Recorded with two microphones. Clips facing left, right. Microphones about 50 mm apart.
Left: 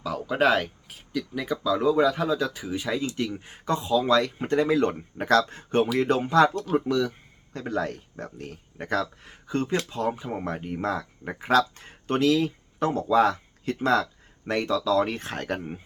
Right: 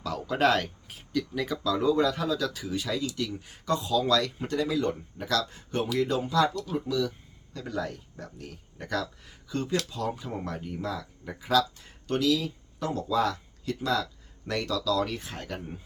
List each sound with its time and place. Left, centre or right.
0.0 s speech: centre
2.2 s speech: left